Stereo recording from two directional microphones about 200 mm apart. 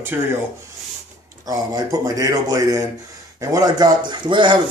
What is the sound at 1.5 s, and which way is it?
A man's voice, 15° right (ahead or behind).